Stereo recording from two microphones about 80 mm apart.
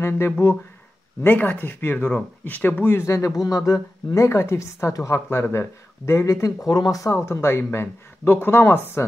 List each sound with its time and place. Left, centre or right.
0.0 s speech: left
3.1 s speech: left